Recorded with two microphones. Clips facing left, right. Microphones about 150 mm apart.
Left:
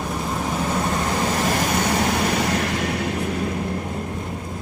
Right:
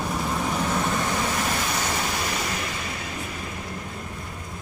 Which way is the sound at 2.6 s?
75° left (ahead or behind).